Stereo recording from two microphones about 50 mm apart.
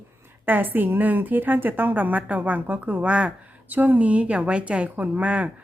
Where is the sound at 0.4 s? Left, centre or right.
Right.